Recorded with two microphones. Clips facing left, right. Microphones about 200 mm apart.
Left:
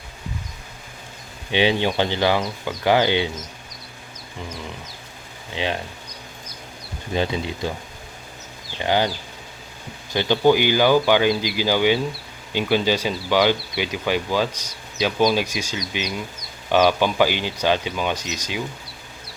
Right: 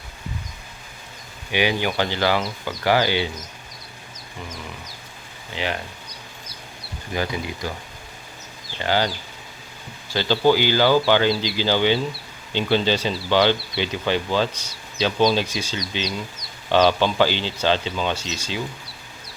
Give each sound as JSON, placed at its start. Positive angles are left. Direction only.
{"t": 1.5, "sound": "speech", "side_deg": 25}
{"t": 5.5, "sound": "speech", "side_deg": 20}
{"t": 7.1, "sound": "speech", "side_deg": 25}
{"t": 8.8, "sound": "speech", "side_deg": 20}
{"t": 10.1, "sound": "speech", "side_deg": 20}